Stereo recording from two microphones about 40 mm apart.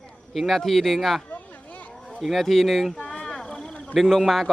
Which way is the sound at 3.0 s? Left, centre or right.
Centre.